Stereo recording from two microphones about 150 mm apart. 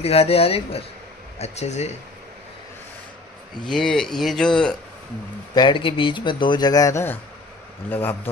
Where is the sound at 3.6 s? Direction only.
5° left (ahead or behind).